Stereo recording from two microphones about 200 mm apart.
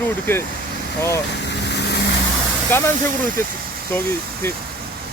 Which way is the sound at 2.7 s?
10° left (ahead or behind).